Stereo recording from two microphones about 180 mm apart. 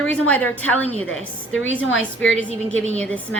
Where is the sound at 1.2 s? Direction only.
90° left.